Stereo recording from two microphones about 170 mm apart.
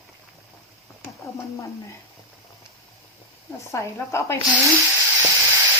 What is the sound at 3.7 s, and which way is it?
Speech, 15° left (ahead or behind).